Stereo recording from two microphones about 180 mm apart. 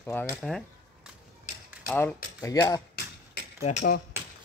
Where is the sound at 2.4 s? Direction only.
20° left (ahead or behind).